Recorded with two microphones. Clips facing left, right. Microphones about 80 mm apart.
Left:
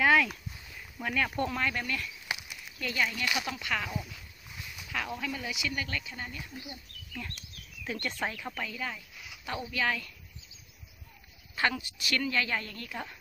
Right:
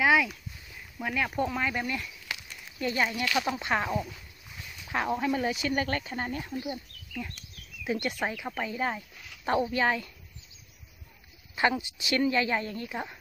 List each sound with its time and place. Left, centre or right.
0.0 s a sound: centre
0.9 s speech: centre
2.2 s a sound: centre
2.8 s speech: right
7.2 s speech: centre; by 10.1 s right
11.5 s speech: right